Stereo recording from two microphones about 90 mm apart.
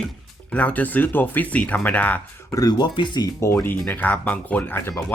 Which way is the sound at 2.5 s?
45° left (ahead or behind).